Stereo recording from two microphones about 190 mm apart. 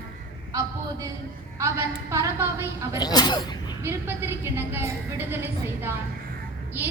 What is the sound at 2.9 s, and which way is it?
Speech, 20° left (ahead or behind).